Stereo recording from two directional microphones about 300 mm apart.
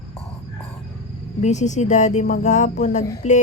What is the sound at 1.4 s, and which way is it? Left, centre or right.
A woman's voice, left.